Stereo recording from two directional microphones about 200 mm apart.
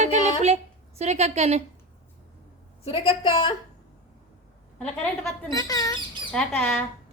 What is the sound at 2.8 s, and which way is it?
Speech, 30° left (ahead or behind).